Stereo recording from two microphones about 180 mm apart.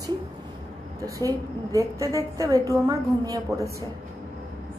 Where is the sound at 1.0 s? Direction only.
20° right (ahead or behind).